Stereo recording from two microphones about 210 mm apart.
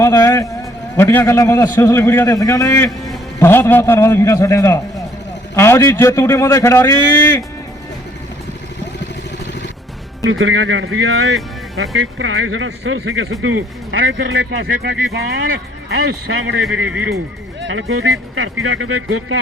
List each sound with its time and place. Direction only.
0.0 s a man's voice: 15° left (ahead or behind)
10.2 s speech: 65° right (ahead or behind)
17.6 s speech: 65° right (ahead or behind)